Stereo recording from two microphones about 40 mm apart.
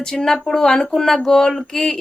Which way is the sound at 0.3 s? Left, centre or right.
Centre.